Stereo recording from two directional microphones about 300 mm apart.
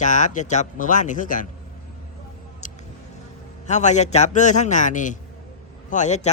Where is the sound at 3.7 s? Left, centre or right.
Left.